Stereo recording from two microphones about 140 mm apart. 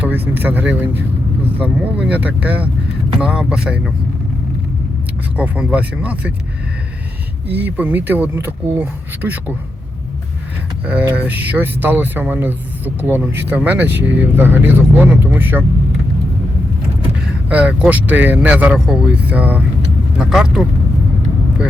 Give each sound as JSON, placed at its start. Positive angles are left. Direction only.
{"t": 0.0, "sound": "speech", "side_deg": -15}
{"t": 5.4, "sound": "speech", "side_deg": -10}
{"t": 7.4, "sound": "speech", "side_deg": -15}
{"t": 10.8, "sound": "speech", "side_deg": -10}
{"t": 17.2, "sound": "speech", "side_deg": -5}